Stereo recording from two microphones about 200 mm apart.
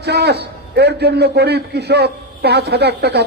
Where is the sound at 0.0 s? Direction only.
55° right (ahead or behind).